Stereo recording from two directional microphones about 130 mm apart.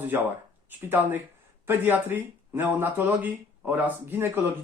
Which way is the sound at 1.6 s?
15° right (ahead or behind).